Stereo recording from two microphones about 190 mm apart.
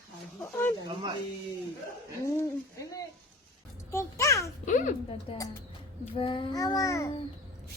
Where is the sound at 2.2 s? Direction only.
15° left (ahead or behind).